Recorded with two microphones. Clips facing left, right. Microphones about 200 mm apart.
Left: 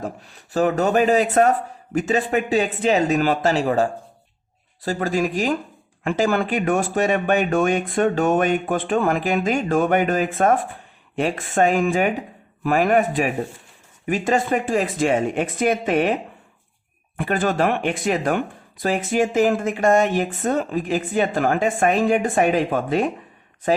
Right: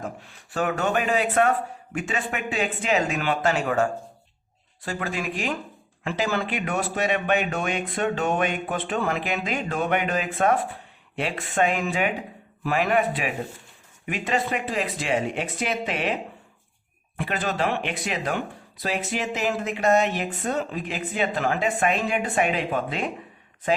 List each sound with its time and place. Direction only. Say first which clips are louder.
0.0 s speech: left 4 dB; 35° left (ahead or behind)
17.2 s speech: left 6 dB; 50° left (ahead or behind)